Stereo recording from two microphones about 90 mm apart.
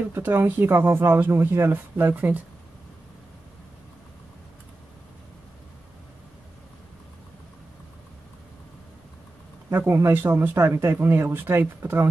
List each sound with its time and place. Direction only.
0.1 s speech: 25° right (ahead or behind)
9.7 s speech: 30° right (ahead or behind)